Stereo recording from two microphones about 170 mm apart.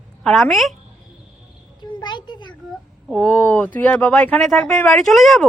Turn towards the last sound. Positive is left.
turn(degrees=0)  # may be behind; listen again after turning